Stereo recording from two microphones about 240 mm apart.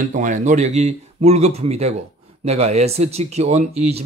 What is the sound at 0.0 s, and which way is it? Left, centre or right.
Speech, right.